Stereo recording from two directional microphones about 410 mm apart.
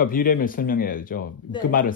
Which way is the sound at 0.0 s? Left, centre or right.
Left.